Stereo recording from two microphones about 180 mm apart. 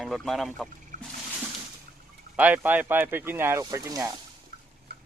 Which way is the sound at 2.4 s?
10° right (ahead or behind).